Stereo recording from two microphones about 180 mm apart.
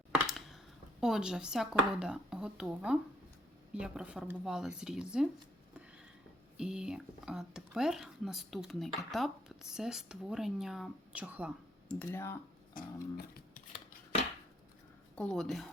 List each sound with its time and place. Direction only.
0.1 s computer keyboard: centre (ahead or behind)
1.0 s speech: centre (ahead or behind)
6.6 s speech: 5° right (ahead or behind)
11.9 s speech: 10° left (ahead or behind)
12.7 s guitar: 55° left (ahead or behind)
15.1 s speech: 5° left (ahead or behind)